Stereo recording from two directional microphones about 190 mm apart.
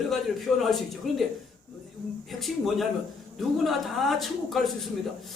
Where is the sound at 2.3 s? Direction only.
Centre (ahead or behind).